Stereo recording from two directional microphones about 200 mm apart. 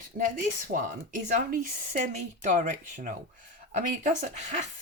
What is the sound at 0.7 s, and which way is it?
Speech, 45° right (ahead or behind).